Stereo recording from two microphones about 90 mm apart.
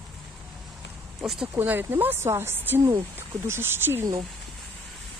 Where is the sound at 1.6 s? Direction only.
25° right (ahead or behind).